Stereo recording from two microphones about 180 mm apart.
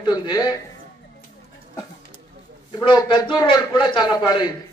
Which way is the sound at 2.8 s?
25° left (ahead or behind).